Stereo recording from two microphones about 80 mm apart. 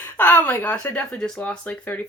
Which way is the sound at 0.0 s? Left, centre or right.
Left.